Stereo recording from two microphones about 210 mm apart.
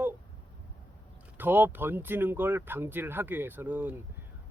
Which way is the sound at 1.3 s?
10° right (ahead or behind).